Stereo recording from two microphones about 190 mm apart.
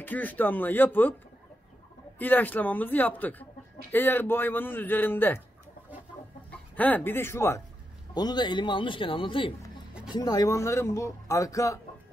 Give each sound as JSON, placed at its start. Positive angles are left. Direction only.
{"t": 0.0, "sound": "speech", "side_deg": 10}
{"t": 2.1, "sound": "speech", "side_deg": 10}
{"t": 6.5, "sound": "speech", "side_deg": 10}